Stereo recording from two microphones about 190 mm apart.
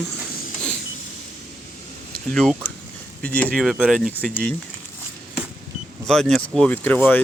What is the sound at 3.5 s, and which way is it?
Speech, 5° right (ahead or behind).